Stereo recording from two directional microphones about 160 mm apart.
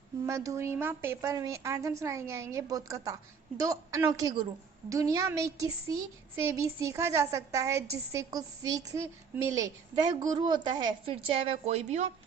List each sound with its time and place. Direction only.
0.3 s a woman's voice: 20° right (ahead or behind); by 12.1 s 45° right (ahead or behind)